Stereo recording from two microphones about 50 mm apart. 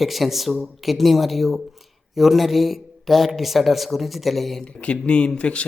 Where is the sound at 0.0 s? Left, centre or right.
Centre.